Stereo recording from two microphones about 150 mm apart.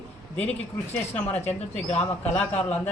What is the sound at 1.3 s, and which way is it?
Speech, 45° left (ahead or behind).